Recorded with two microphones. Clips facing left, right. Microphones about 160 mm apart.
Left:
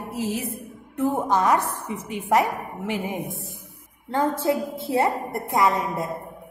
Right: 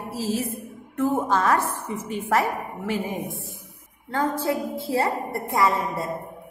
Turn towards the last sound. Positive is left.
turn(degrees=20)  # may be behind; listen again after turning